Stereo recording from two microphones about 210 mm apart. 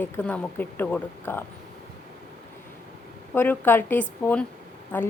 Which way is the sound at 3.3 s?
10° left (ahead or behind).